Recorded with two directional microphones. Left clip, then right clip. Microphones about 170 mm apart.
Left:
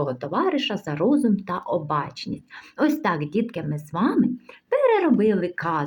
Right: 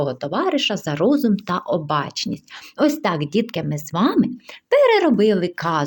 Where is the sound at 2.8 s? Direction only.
25° right (ahead or behind).